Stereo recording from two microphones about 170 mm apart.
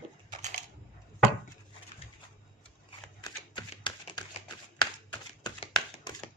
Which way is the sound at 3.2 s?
25° left (ahead or behind).